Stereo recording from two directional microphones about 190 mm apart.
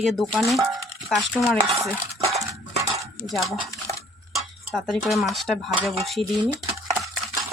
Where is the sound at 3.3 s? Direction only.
Centre (ahead or behind).